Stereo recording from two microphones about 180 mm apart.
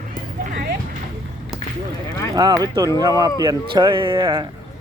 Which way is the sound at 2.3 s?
20° right (ahead or behind).